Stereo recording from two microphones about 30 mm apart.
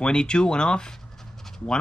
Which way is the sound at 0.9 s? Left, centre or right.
Centre.